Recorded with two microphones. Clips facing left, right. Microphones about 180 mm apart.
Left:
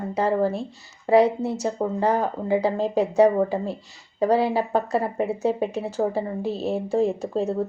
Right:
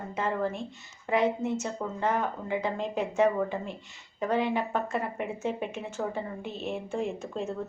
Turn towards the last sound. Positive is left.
turn(degrees=35)  # may be behind; listen again after turning